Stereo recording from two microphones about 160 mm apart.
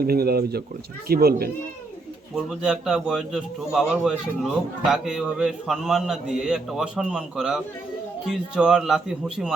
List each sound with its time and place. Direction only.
0.0 s speech: 75° right (ahead or behind)
2.3 s a man's voice: 5° right (ahead or behind)